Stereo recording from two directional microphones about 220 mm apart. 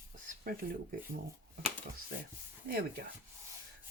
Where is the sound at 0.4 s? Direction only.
40° right (ahead or behind).